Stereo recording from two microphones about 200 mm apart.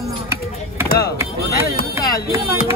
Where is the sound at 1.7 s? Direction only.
50° left (ahead or behind).